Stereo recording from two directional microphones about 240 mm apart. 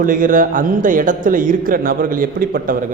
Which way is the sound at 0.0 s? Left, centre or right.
Right.